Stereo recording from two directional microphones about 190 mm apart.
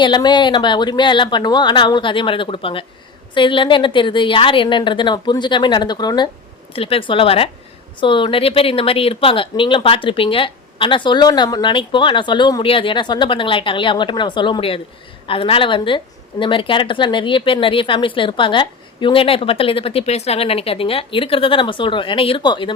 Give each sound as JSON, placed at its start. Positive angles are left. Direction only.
{"t": 0.0, "sound": "speech", "side_deg": 25}